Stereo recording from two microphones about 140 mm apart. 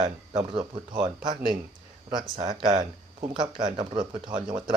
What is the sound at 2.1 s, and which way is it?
Speech, 30° right (ahead or behind).